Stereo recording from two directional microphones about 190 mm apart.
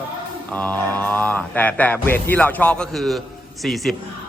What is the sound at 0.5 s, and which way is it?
A man's voice, 10° left (ahead or behind).